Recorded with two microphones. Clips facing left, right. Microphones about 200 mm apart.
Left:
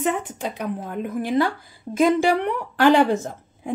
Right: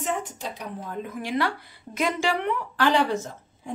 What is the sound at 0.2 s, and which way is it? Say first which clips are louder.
A woman's voice: left 6 dB; 60° left (ahead or behind).